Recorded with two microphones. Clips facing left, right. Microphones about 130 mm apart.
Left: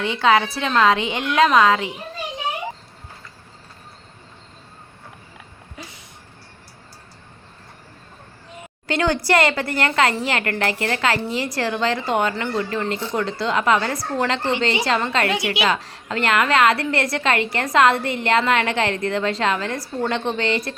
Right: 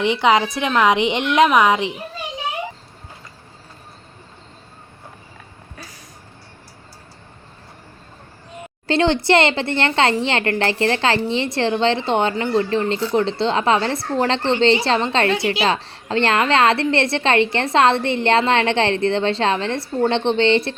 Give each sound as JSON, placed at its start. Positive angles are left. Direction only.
{"t": 0.0, "sound": "a woman's voice", "side_deg": -20}
{"t": 8.9, "sound": "a woman's voice", "side_deg": -25}